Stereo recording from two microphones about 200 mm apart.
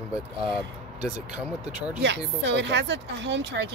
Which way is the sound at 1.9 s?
60° right (ahead or behind).